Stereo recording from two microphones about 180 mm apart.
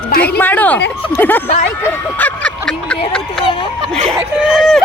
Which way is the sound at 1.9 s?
10° left (ahead or behind).